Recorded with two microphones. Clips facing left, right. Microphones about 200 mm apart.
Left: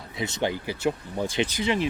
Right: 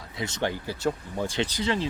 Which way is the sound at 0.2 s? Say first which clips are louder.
Left 2 dB; 15° left (ahead or behind).